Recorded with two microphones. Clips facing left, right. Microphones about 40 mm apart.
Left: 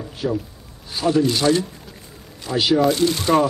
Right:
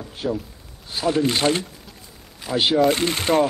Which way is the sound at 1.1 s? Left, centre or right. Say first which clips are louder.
Left 3 dB; right.